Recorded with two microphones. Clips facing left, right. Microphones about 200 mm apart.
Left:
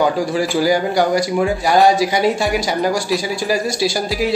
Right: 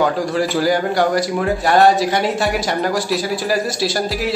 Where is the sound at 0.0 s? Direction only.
Centre (ahead or behind).